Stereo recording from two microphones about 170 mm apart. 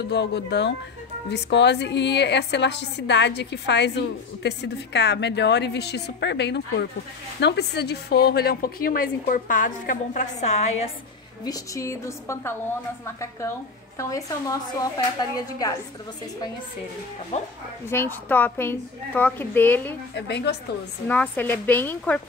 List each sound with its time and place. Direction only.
0.0 s a woman's voice: 85° left; by 10.7 s 40° left (ahead or behind)
11.4 s a woman's voice: 20° left (ahead or behind)
17.3 s speech: 40° left (ahead or behind)
17.8 s a woman's voice: 15° left (ahead or behind)
20.2 s a woman's voice: 80° left
21.1 s a woman's voice: 10° left (ahead or behind)